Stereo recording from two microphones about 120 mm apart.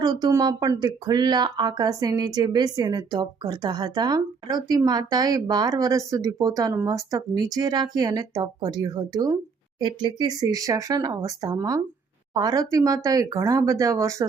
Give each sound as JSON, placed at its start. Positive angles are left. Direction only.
{"t": 0.0, "sound": "speech", "side_deg": -35}